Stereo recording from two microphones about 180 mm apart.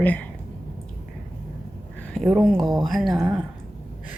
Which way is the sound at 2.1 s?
Centre (ahead or behind).